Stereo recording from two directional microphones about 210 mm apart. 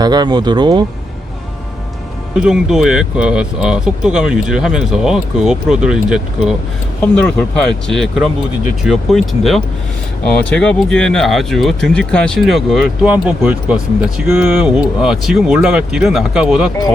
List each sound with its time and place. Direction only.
0.0 s speech: 20° right (ahead or behind)
2.4 s speech: 5° right (ahead or behind)